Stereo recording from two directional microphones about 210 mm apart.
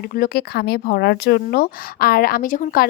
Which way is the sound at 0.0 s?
45° left (ahead or behind).